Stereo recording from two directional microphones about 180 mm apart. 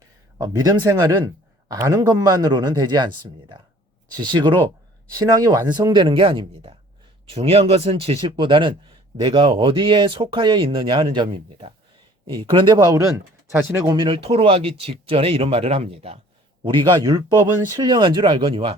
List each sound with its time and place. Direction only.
0.3 s speech: 20° right (ahead or behind)
4.1 s speech: 25° right (ahead or behind)